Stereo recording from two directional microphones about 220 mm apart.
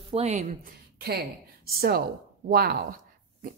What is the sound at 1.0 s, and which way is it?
Speech, 45° right (ahead or behind).